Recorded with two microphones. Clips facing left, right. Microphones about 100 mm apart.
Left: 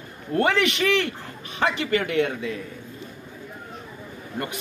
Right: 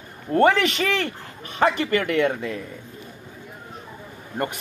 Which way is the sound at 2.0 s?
55° right (ahead or behind).